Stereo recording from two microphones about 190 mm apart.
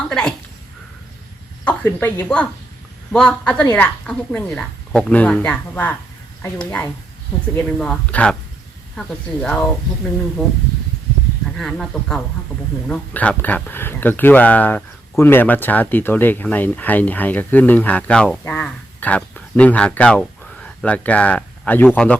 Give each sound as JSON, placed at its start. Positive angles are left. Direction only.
{"t": 0.1, "sound": "a woman's voice", "side_deg": 5}
{"t": 1.6, "sound": "speech", "side_deg": 10}
{"t": 3.6, "sound": "speech", "side_deg": 15}
{"t": 11.5, "sound": "speech", "side_deg": 5}